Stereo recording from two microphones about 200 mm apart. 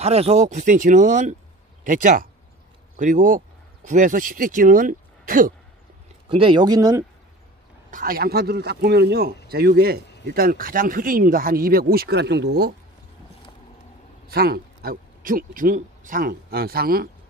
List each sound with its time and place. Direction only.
0.0 s speech: 30° right (ahead or behind)
6.2 s speech: 25° right (ahead or behind)
7.9 s speech: 45° right (ahead or behind)
14.2 s speech: 50° right (ahead or behind)